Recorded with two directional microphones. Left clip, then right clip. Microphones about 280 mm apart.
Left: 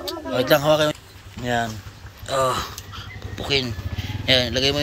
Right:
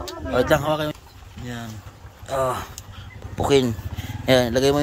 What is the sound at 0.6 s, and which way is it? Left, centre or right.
Speech, centre.